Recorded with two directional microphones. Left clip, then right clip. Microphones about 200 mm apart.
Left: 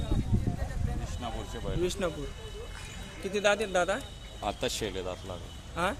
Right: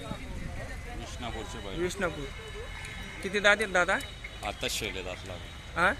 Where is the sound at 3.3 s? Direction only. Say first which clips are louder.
Right 2 dB; centre (ahead or behind).